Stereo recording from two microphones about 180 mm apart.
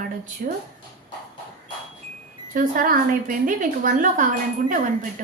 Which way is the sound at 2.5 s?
50° right (ahead or behind).